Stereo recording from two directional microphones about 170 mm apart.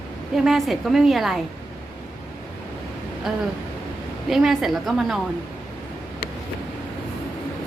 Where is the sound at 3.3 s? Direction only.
5° right (ahead or behind).